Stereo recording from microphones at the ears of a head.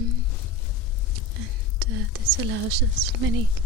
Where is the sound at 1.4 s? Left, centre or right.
Right.